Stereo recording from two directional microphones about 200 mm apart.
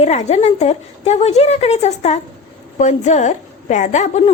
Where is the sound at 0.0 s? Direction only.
35° left (ahead or behind).